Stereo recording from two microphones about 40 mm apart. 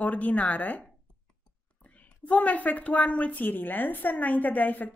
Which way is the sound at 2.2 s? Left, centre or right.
Left.